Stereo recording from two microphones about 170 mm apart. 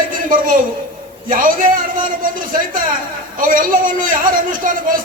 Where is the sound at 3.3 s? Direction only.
55° right (ahead or behind).